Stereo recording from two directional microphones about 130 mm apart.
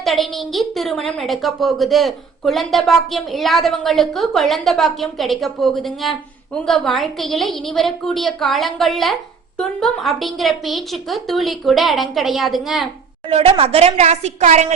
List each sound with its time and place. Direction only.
0.0 s a woman's voice: centre (ahead or behind)
13.3 s a woman's voice: 45° right (ahead or behind)